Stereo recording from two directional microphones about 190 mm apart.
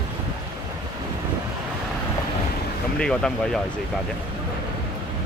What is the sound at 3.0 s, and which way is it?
Speech, 5° left (ahead or behind).